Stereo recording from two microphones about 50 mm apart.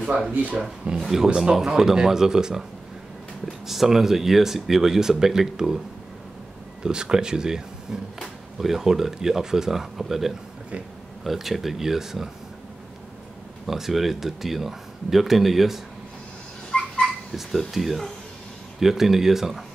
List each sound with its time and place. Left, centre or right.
0.3 s speech: right
0.6 s speech: centre
3.6 s speech: centre
6.8 s speech: centre
13.7 s speech: centre
16.7 s dog: centre
17.3 s speech: centre